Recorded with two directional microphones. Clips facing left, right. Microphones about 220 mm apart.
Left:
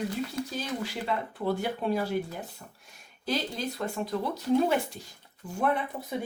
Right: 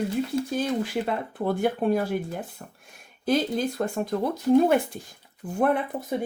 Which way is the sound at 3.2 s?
50° right (ahead or behind).